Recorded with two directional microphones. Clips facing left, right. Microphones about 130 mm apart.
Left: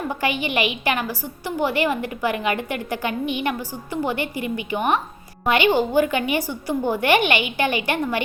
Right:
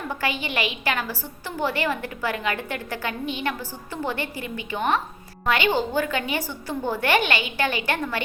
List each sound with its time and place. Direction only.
0.1 s a woman's voice: 15° left (ahead or behind)